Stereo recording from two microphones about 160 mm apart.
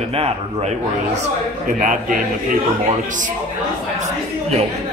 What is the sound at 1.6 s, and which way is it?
Speech, 55° right (ahead or behind).